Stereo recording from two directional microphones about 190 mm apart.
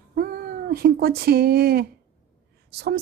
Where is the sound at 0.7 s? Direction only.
55° right (ahead or behind).